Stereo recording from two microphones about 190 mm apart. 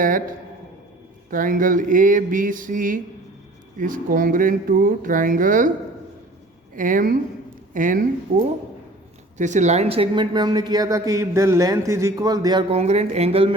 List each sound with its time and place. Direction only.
1.3 s speech: 45° right (ahead or behind)
6.7 s speech: 45° right (ahead or behind)
9.4 s speech: 40° right (ahead or behind); by 12.6 s 20° right (ahead or behind)
12.7 s speech: 35° right (ahead or behind)